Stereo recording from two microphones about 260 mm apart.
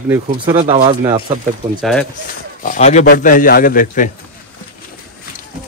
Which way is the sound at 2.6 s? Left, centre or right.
Left.